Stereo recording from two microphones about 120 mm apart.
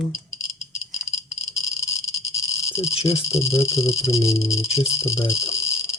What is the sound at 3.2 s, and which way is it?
Speech, 25° left (ahead or behind).